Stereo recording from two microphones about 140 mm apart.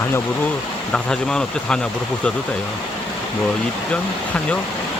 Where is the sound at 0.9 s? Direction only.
5° left (ahead or behind).